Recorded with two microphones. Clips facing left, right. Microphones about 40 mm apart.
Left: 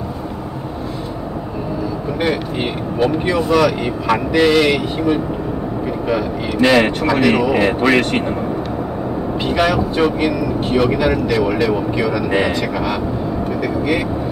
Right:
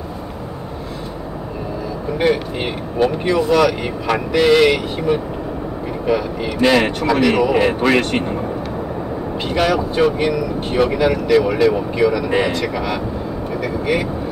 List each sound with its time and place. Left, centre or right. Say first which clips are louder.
2.1 s speech: right 3 dB; centre
6.6 s speech: left 2 dB; centre
9.5 s speech: left 1 dB; centre